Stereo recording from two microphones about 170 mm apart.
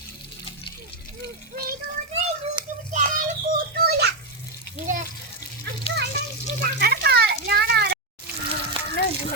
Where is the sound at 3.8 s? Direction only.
70° right (ahead or behind).